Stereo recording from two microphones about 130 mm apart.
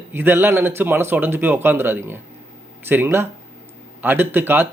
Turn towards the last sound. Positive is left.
turn(degrees=-15)  # may be behind; listen again after turning